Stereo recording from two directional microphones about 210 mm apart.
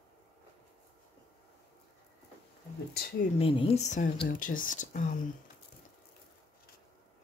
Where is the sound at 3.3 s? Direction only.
25° left (ahead or behind).